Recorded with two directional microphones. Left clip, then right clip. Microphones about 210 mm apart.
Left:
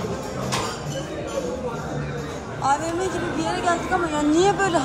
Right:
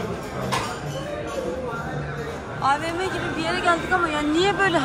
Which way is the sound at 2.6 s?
15° left (ahead or behind).